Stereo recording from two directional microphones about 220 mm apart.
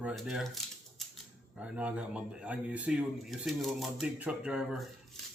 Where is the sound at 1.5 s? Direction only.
5° right (ahead or behind).